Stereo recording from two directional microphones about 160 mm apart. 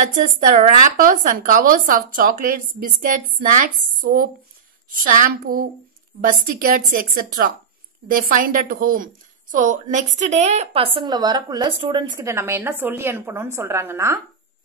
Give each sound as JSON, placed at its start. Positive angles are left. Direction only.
{"t": 0.0, "sound": "a woman's voice", "side_deg": -55}